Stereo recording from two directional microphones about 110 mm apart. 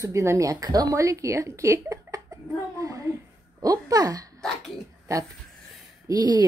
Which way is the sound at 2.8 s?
30° right (ahead or behind).